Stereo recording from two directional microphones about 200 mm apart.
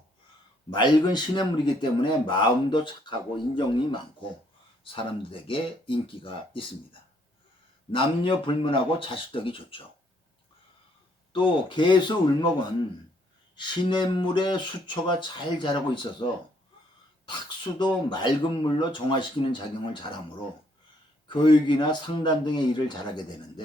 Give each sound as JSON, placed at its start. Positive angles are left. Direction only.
{"t": 0.7, "sound": "speech", "side_deg": 20}
{"t": 7.9, "sound": "speech", "side_deg": 25}
{"t": 11.3, "sound": "speech", "side_deg": 25}
{"t": 13.6, "sound": "speech", "side_deg": 20}
{"t": 17.7, "sound": "speech", "side_deg": 20}
{"t": 21.2, "sound": "speech", "side_deg": 25}